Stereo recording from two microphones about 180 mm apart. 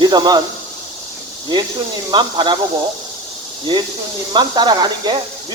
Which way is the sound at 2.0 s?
25° right (ahead or behind).